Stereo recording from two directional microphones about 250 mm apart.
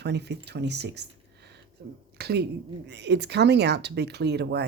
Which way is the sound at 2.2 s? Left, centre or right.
Right.